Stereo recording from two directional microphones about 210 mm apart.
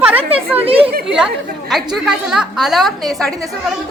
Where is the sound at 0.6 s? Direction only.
25° right (ahead or behind).